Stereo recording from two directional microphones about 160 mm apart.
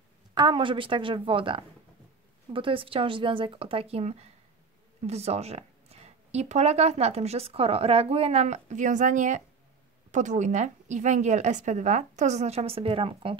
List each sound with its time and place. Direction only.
0.3 s a woman's voice: 30° right (ahead or behind)